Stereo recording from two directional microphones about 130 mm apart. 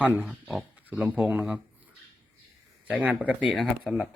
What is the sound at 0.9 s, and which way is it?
Speech, 10° right (ahead or behind).